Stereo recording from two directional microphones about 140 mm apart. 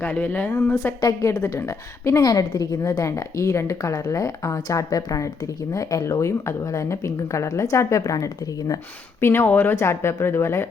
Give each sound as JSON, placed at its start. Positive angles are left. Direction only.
{"t": 0.0, "sound": "a woman's voice", "side_deg": 10}